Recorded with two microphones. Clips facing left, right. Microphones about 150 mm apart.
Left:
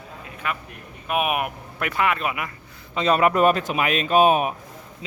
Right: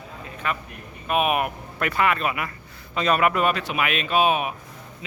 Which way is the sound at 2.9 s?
30° left (ahead or behind).